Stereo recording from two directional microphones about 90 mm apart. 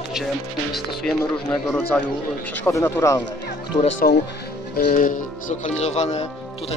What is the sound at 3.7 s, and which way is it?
Speech, 45° left (ahead or behind).